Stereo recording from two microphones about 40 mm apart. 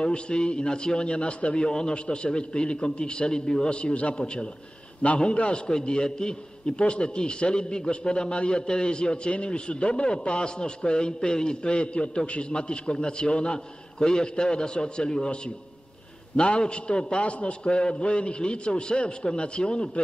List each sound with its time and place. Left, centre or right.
0.0 s a man's voice: left
3.7 s a man's voice: left